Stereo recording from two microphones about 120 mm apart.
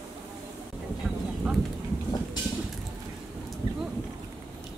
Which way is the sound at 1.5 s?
5° right (ahead or behind).